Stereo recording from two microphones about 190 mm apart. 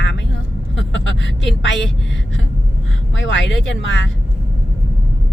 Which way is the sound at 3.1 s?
80° left.